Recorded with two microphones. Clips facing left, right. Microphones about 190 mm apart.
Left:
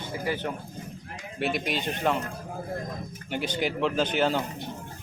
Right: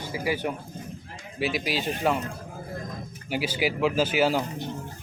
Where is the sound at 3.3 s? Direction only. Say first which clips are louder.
Right 2 dB; 5° right (ahead or behind).